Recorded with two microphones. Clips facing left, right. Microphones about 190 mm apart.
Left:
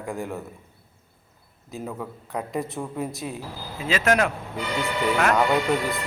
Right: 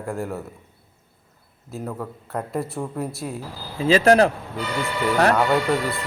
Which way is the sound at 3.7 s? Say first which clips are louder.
Right 7 dB; 30° right (ahead or behind).